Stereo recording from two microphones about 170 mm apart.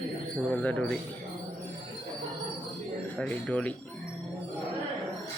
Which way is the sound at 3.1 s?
5° left (ahead or behind).